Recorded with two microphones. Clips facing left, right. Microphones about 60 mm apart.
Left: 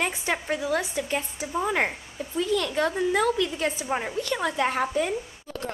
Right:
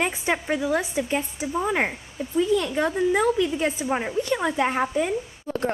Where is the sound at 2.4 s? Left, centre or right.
Centre.